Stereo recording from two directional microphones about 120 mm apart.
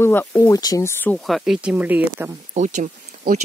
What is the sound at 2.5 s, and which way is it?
Speech, 85° right.